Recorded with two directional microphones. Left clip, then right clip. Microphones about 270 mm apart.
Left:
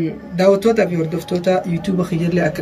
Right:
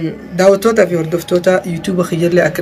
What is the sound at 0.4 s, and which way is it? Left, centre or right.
Speech, centre.